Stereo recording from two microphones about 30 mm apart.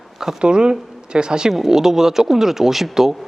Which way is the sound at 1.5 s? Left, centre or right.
Centre.